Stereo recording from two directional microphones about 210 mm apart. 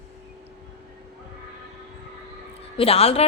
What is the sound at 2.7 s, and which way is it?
Speech, 30° left (ahead or behind).